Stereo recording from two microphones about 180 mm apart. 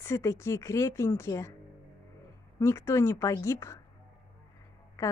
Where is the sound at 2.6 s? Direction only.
15° left (ahead or behind).